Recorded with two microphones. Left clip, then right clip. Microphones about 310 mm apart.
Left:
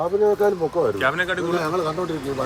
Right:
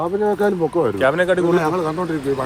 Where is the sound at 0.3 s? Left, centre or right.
Right.